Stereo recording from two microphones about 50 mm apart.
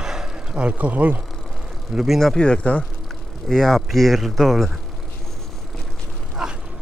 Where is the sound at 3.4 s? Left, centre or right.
Centre.